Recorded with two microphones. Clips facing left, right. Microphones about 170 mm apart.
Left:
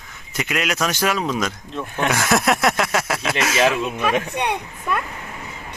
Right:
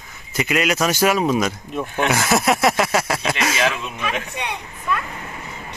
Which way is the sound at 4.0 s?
50° left (ahead or behind).